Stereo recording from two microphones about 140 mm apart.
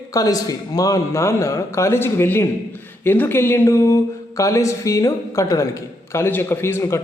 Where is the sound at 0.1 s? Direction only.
25° left (ahead or behind).